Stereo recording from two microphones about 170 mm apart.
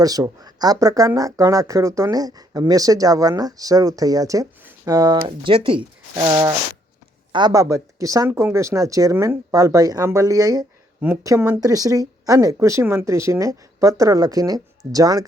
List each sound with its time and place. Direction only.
0.0 s speech: 20° right (ahead or behind)